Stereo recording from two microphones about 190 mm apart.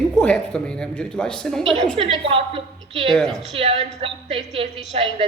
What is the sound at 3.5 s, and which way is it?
A woman's voice, 30° right (ahead or behind).